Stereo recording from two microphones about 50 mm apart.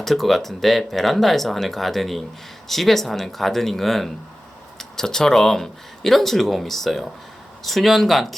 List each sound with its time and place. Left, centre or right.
0.0 s speech: centre